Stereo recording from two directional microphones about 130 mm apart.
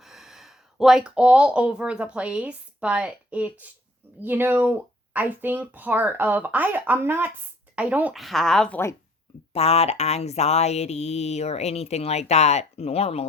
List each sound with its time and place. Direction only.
0.0 s speech: 5° right (ahead or behind)
8.2 s speech: centre (ahead or behind)
9.5 s a sound: 50° left (ahead or behind)